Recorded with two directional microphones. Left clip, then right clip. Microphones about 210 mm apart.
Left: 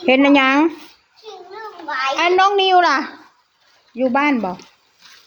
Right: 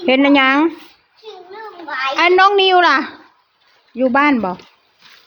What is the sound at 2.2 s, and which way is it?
A woman's voice, 20° right (ahead or behind).